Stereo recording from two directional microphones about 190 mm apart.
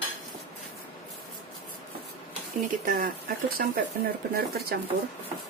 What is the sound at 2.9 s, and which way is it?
Speech, 50° right (ahead or behind).